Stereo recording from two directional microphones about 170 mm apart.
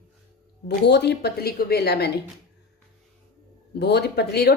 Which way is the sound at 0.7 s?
85° left.